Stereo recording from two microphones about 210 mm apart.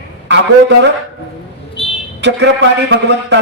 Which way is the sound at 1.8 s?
25° left (ahead or behind).